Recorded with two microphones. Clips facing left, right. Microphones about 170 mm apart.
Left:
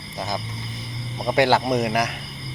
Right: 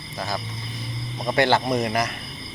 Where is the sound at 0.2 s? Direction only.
15° left (ahead or behind).